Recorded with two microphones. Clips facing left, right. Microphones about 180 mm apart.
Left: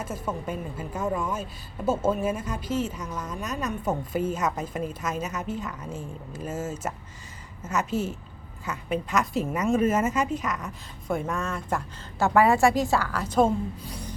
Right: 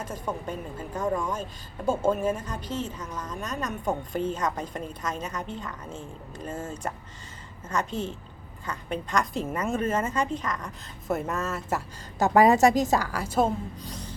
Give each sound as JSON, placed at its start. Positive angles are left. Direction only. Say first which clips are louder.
{"t": 0.0, "sound": "a woman's voice", "louder": "left 1 dB", "side_deg": 5}
{"t": 11.1, "sound": "speech", "louder": "even", "side_deg": -5}
{"t": 12.2, "sound": "a woman's voice", "louder": "right 1 dB", "side_deg": -15}